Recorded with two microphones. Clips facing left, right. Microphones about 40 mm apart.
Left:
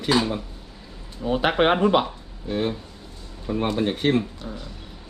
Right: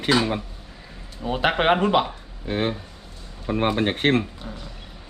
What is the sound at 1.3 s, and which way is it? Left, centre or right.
Speech, centre.